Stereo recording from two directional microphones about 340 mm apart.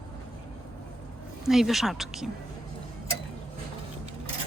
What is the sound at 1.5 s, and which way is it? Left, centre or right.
Speech, centre.